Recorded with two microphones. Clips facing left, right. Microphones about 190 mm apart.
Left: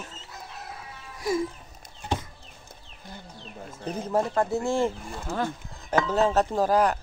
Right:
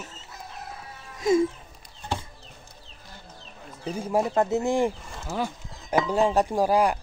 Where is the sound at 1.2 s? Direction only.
25° right (ahead or behind).